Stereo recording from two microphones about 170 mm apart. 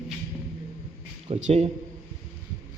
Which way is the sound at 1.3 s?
40° right (ahead or behind).